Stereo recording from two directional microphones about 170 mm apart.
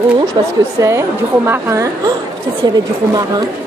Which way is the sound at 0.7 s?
15° right (ahead or behind).